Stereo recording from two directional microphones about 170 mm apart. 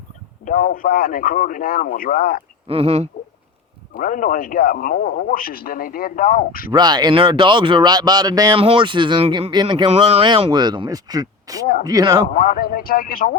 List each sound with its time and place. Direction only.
0.4 s speech: 55° left (ahead or behind)
2.6 s speech: 35° right (ahead or behind)
3.9 s speech: 50° left (ahead or behind)
6.7 s speech: 25° right (ahead or behind)
12.3 s speech: 60° left (ahead or behind)